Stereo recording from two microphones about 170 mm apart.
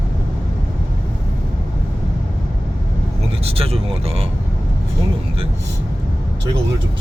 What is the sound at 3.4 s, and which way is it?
Speech, 35° right (ahead or behind).